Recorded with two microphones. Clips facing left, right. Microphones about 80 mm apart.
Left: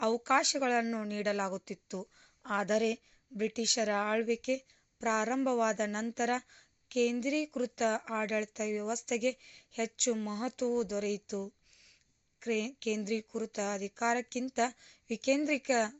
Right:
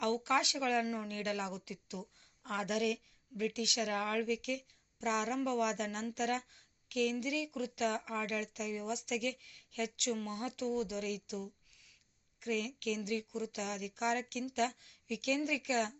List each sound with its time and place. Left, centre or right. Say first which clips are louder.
0.0 s a woman's voice: left 3 dB; left
2.4 s a woman's voice: left 5 dB; left